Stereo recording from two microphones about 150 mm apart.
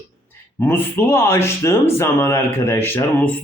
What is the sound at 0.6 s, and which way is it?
Speech, 15° left (ahead or behind).